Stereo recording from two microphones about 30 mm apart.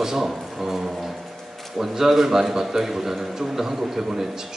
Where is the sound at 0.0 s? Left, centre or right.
Centre.